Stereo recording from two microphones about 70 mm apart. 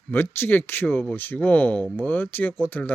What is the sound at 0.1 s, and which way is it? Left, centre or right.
Speech, left.